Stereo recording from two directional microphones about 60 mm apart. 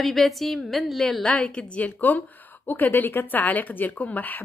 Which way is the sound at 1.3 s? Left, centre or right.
Centre.